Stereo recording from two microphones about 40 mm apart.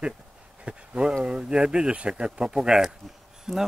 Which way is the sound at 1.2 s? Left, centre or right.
Right.